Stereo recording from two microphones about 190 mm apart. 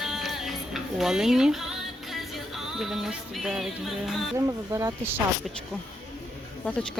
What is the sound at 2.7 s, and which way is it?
Speech, centre (ahead or behind).